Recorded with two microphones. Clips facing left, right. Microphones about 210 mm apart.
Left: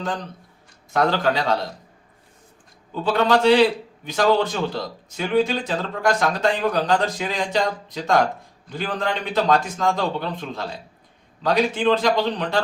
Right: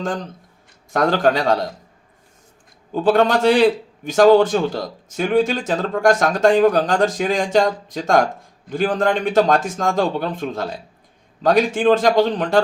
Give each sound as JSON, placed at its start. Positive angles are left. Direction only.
{"t": 0.9, "sound": "a man's voice", "side_deg": -50}
{"t": 2.9, "sound": "a man's voice", "side_deg": -50}